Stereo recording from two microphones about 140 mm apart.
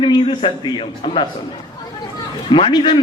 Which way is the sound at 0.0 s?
35° left (ahead or behind).